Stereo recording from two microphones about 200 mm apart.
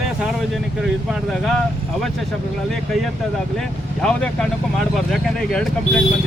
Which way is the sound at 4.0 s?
5° left (ahead or behind).